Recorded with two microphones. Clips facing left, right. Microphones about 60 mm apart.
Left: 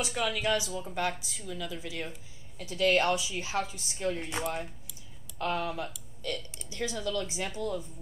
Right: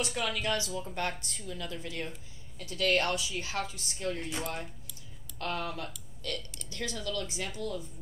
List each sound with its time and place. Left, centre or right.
0.0 s speech: centre